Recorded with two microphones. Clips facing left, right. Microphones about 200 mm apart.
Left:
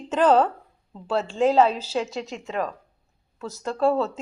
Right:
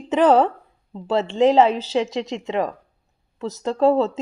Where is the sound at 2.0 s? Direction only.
75° right (ahead or behind).